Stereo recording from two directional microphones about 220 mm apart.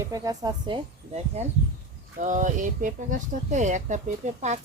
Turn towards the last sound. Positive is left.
turn(degrees=-30)  # may be behind; listen again after turning